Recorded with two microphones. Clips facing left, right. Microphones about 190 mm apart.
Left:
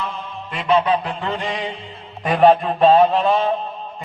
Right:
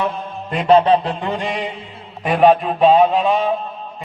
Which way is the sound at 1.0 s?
15° right (ahead or behind).